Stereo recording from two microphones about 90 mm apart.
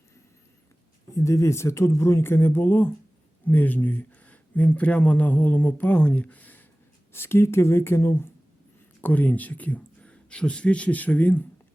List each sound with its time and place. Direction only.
1.1 s speech: 35° left (ahead or behind)
9.0 s speech: 15° left (ahead or behind)